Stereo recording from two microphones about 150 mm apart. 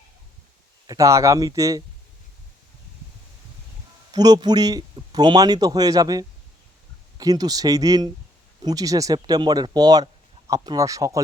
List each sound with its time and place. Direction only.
0.9 s speech: 20° right (ahead or behind)
4.1 s speech: 25° right (ahead or behind)